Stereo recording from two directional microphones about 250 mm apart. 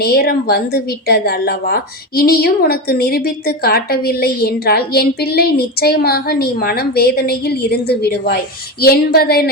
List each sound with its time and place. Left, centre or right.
0.0 s a woman's voice: left